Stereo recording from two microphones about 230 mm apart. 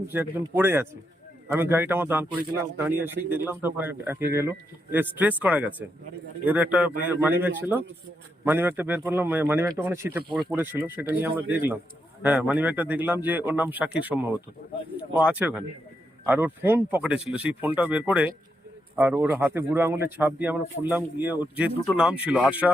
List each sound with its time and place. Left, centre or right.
0.1 s speech: centre
14.6 s speech: left
14.9 s speech: centre